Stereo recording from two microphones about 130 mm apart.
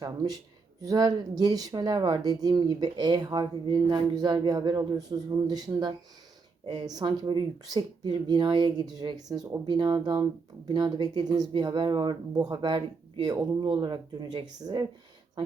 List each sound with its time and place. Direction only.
0.0 s speech: 30° right (ahead or behind)